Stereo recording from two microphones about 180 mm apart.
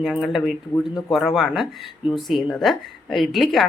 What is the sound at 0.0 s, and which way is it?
A woman's voice, centre (ahead or behind).